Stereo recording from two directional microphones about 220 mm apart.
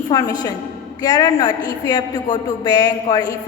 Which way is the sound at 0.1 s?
15° left (ahead or behind).